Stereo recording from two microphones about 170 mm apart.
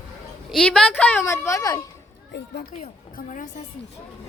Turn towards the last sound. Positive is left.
turn(degrees=50)  # may be behind; listen again after turning